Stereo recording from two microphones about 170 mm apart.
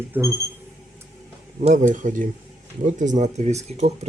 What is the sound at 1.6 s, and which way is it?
Speech, 45° right (ahead or behind).